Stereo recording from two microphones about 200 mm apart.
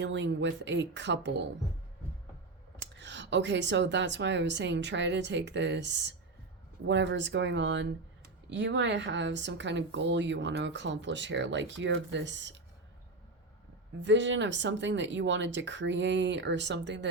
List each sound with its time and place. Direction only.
0.0 s speech: 65° right (ahead or behind)
3.0 s speech: 60° right (ahead or behind)
14.0 s speech: 65° right (ahead or behind)